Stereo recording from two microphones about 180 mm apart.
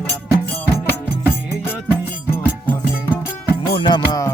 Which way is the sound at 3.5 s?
25° left (ahead or behind).